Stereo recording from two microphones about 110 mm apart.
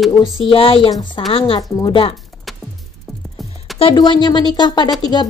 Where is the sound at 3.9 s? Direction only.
40° left (ahead or behind).